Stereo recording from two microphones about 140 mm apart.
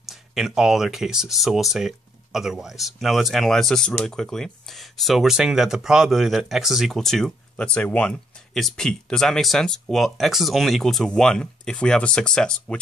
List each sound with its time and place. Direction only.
0.3 s speech: 5° right (ahead or behind)